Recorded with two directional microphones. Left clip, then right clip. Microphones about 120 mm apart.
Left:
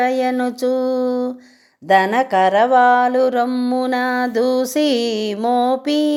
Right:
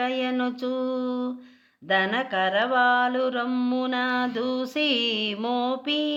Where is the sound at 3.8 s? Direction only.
55° left (ahead or behind).